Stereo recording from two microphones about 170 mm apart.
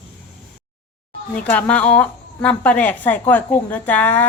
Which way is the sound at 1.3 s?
10° left (ahead or behind).